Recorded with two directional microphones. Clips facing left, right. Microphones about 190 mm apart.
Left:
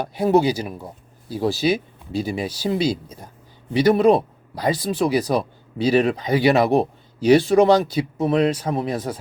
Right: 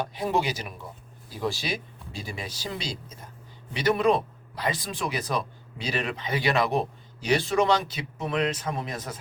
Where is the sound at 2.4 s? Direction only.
35° left (ahead or behind).